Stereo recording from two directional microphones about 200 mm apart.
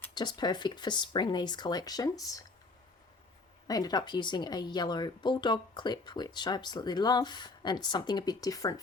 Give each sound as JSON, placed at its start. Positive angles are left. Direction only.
{"t": 0.1, "sound": "speech", "side_deg": 20}
{"t": 3.7, "sound": "speech", "side_deg": 20}